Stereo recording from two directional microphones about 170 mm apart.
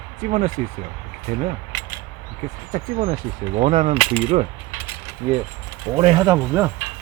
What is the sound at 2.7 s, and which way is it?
Speech, 50° right (ahead or behind).